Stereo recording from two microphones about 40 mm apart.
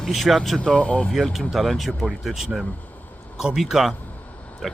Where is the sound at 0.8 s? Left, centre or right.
Left.